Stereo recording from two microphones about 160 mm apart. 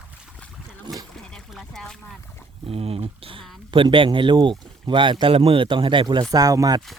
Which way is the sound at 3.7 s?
30° right (ahead or behind).